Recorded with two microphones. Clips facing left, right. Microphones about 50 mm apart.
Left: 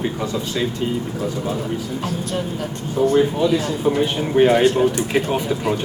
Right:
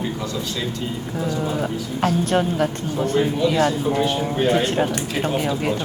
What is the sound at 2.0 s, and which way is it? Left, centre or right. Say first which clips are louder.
Speech: right 5 dB; right.